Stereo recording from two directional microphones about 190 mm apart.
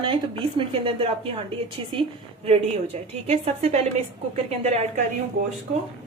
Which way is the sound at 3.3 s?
35° right (ahead or behind).